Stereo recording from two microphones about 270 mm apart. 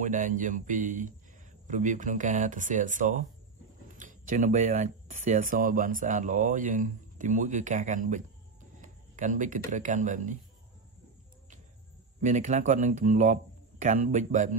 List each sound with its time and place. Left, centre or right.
0.0 s speech: right
8.8 s a sound: right
9.7 s speech: right
12.2 s speech: right